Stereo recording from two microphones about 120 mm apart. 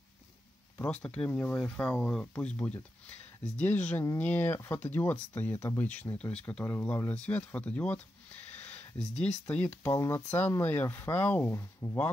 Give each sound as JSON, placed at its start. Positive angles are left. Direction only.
{"t": 0.7, "sound": "speech", "side_deg": 10}
{"t": 8.5, "sound": "a sound", "side_deg": 10}
{"t": 9.2, "sound": "speech", "side_deg": 15}